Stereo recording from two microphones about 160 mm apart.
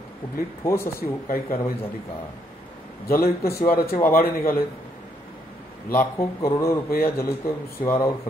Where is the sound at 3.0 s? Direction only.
70° left (ahead or behind).